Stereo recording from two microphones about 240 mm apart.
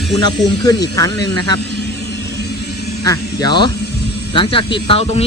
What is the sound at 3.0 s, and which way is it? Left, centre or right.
Speech, centre.